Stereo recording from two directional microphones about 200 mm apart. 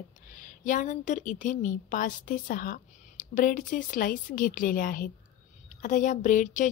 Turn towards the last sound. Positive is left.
turn(degrees=40)  # may be behind; listen again after turning